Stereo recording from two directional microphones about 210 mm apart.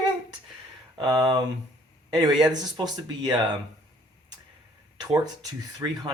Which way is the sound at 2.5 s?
20° right (ahead or behind).